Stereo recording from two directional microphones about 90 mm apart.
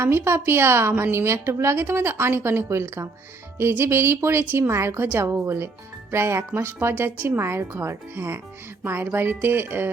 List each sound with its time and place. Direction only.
0.0 s a woman's voice: 30° right (ahead or behind)